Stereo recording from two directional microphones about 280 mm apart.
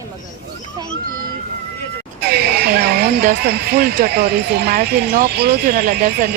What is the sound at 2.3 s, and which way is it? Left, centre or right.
Speech, right.